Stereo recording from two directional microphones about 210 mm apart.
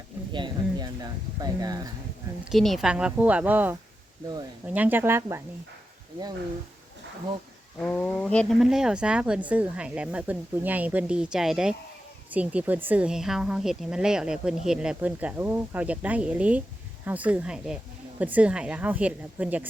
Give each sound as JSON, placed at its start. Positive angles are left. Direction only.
{"t": 0.3, "sound": "speech", "side_deg": -20}
{"t": 2.4, "sound": "speech", "side_deg": 0}
{"t": 7.8, "sound": "speech", "side_deg": 5}